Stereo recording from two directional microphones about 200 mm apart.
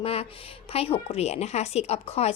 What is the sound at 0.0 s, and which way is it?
A woman's voice, 30° left (ahead or behind).